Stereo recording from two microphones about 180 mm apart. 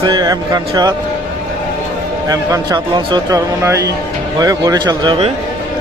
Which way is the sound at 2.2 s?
20° right (ahead or behind).